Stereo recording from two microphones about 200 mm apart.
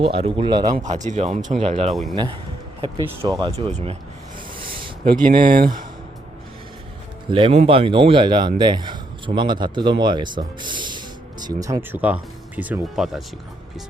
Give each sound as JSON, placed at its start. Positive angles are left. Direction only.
{"t": 0.0, "sound": "speech", "side_deg": -30}
{"t": 0.8, "sound": "speech", "side_deg": -40}
{"t": 3.2, "sound": "speech", "side_deg": -20}
{"t": 5.1, "sound": "speech", "side_deg": -45}
{"t": 7.3, "sound": "speech", "side_deg": -25}